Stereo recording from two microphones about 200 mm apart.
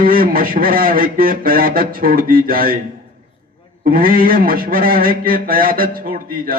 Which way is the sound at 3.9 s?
45° right (ahead or behind).